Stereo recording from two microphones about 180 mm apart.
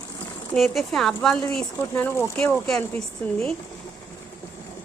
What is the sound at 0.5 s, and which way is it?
Speech, centre (ahead or behind).